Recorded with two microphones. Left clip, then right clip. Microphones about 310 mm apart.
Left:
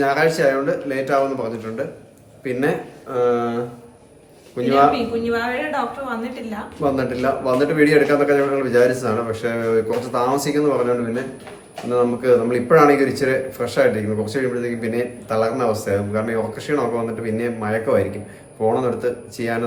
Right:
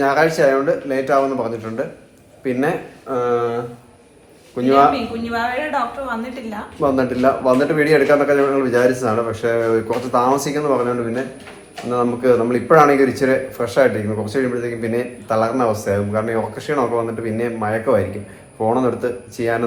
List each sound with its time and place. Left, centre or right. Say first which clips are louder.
0.0 s a woman's voice: right 2 dB; centre